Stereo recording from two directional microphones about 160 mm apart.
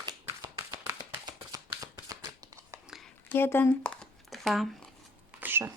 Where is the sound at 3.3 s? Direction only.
15° left (ahead or behind).